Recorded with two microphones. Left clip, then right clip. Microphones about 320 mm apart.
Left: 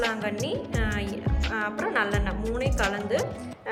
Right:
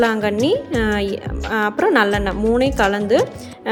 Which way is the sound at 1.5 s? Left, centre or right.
Centre.